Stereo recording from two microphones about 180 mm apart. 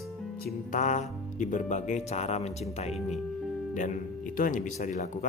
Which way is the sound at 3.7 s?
45° left (ahead or behind).